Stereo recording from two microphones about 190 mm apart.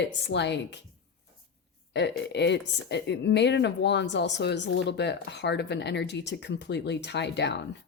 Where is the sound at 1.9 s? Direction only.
65° left (ahead or behind).